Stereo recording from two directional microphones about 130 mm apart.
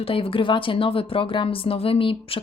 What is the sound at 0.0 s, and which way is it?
Speech, 45° left (ahead or behind).